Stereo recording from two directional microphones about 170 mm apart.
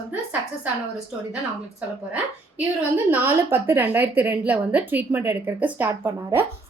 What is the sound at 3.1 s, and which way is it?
A woman's voice, 10° right (ahead or behind).